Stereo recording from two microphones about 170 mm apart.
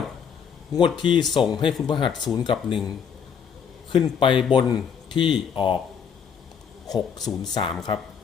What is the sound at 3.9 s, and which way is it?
A man's voice, 30° left (ahead or behind).